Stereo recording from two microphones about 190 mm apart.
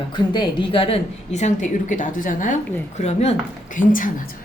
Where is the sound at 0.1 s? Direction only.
25° left (ahead or behind).